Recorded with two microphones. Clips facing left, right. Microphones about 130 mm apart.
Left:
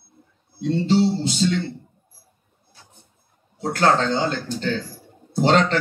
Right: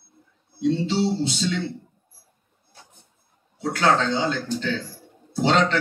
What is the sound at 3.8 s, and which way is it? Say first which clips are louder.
A man's voice: left 2 dB; 45° left (ahead or behind).